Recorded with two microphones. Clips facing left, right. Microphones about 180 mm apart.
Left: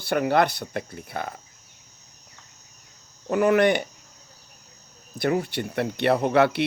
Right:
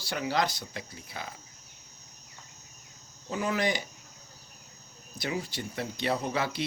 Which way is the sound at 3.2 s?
65° left (ahead or behind).